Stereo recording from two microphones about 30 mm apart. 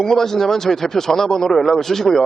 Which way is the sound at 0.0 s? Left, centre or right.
Centre.